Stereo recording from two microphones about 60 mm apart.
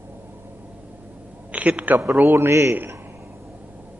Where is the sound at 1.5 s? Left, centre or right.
Right.